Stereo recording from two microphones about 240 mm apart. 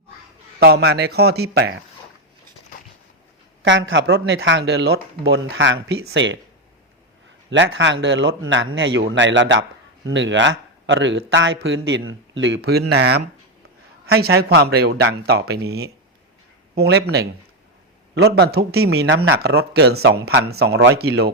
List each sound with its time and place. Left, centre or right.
0.6 s speech: right
3.6 s speech: right
7.5 s speech: right